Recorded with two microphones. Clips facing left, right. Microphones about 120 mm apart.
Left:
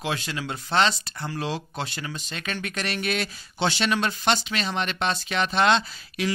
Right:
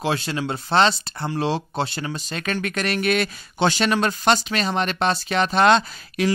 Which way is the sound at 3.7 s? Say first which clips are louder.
Right 4 dB; 45° right (ahead or behind).